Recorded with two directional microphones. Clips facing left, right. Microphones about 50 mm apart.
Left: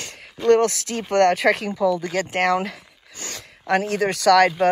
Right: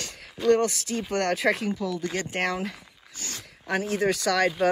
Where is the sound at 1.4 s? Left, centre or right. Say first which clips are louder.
Left 6 dB; left.